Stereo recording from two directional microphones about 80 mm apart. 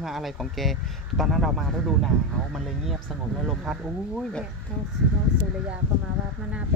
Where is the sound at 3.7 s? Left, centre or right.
Centre.